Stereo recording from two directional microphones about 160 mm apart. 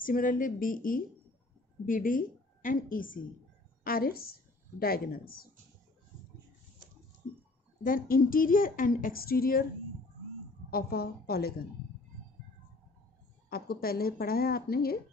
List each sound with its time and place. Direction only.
0.0 s a woman's voice: 60° left (ahead or behind)
7.8 s speech: 60° left (ahead or behind)
10.7 s speech: 70° left (ahead or behind)
13.5 s speech: 70° left (ahead or behind)